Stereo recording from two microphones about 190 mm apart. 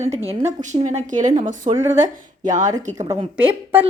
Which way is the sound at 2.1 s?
45° right (ahead or behind).